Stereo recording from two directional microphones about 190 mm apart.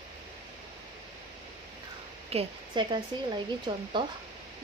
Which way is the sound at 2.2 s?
30° right (ahead or behind).